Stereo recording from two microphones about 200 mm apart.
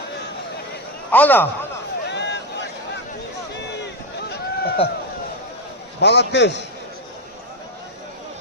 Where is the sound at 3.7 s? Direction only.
60° left (ahead or behind).